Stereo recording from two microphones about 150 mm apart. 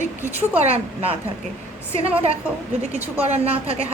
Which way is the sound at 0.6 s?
45° right (ahead or behind).